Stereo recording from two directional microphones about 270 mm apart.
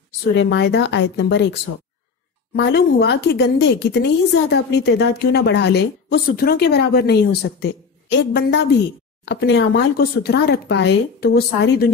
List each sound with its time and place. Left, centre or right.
0.4 s a woman's voice: left